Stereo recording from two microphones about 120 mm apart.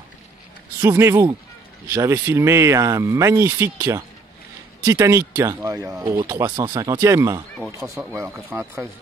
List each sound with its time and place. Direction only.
0.7 s speech: 20° right (ahead or behind)
8.5 s speech: 5° right (ahead or behind)